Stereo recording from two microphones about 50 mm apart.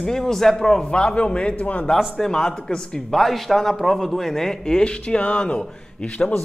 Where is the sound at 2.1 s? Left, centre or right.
Centre.